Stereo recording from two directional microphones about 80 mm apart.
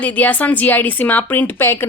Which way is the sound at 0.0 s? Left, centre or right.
Centre.